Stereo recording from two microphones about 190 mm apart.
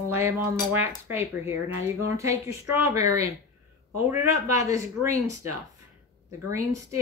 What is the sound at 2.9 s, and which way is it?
Speech, 15° right (ahead or behind).